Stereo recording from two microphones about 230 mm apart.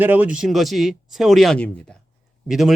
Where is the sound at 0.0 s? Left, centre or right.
Centre.